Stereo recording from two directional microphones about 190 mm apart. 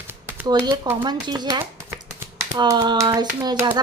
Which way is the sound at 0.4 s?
20° right (ahead or behind).